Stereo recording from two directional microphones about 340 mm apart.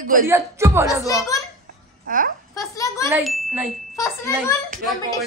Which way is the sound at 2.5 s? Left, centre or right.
Centre.